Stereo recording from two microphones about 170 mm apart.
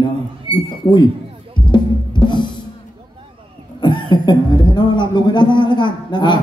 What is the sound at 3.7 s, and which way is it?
Speech, 25° left (ahead or behind).